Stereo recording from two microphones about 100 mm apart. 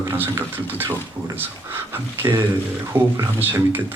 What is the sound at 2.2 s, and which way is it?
Speech, 20° right (ahead or behind).